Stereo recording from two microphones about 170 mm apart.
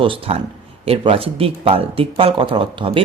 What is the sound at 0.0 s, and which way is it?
Speech, 30° right (ahead or behind).